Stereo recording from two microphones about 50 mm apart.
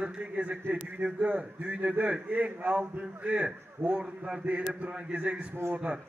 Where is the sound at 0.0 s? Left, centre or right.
Right.